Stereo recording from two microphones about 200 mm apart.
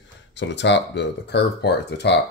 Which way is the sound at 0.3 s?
60° left (ahead or behind).